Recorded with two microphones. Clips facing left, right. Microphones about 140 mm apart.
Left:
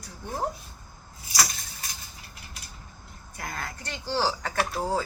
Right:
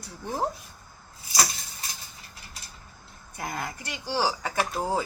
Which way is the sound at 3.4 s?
15° right (ahead or behind).